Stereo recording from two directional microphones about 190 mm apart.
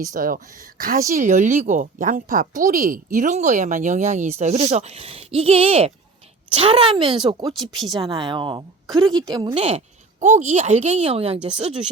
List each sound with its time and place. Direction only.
0.1 s speech: 45° right (ahead or behind); by 7.5 s 30° right (ahead or behind)
7.6 s speech: centre (ahead or behind)
7.9 s speech: 25° right (ahead or behind)